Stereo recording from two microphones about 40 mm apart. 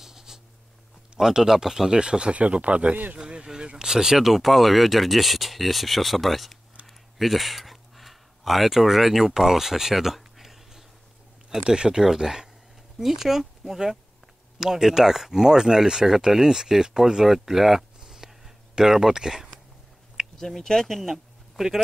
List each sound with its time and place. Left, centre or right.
0.0 s writing: centre
1.1 s speech: centre
2.0 s speech: right
2.3 s speech: right; by 4.2 s centre
4.2 s speech: centre
6.9 s a sound: centre
11.5 s speech: right
20.3 s speech: centre
21.1 s a sound: centre